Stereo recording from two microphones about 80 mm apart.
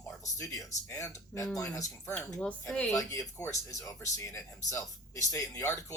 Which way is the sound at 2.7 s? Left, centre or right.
Centre.